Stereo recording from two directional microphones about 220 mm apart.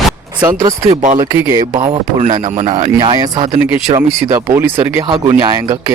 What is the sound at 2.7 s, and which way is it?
Speech, 20° right (ahead or behind).